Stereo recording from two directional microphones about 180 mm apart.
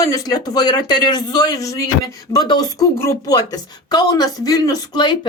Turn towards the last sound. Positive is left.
turn(degrees=25)  # may be behind; listen again after turning